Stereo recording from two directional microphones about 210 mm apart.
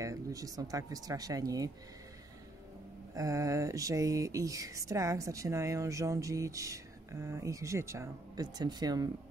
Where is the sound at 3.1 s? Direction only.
15° right (ahead or behind).